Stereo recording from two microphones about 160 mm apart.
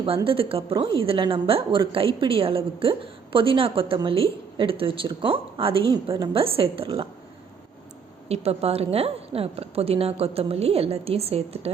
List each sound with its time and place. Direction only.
0.3 s a woman's voice: 35° right (ahead or behind)
8.3 s a woman's voice: 40° right (ahead or behind)